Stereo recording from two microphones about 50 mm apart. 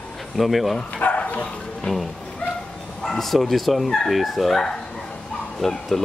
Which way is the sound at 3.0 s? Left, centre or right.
Centre.